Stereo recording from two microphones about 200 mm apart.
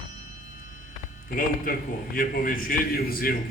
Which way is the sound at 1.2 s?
45° left (ahead or behind).